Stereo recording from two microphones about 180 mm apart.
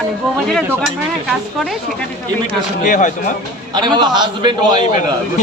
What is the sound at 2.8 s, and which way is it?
Speech, 45° left (ahead or behind).